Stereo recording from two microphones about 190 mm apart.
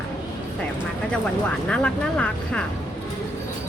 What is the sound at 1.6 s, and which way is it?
Speech, 5° left (ahead or behind).